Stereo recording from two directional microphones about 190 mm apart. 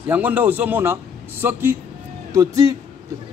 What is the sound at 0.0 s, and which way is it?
A man's voice, 10° right (ahead or behind).